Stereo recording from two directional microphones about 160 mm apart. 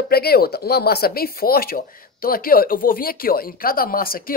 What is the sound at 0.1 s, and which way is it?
Speech, 75° left (ahead or behind).